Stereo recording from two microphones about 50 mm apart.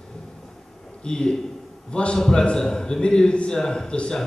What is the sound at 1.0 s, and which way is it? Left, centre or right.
A man's voice, centre.